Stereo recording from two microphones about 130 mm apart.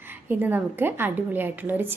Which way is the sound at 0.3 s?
15° right (ahead or behind).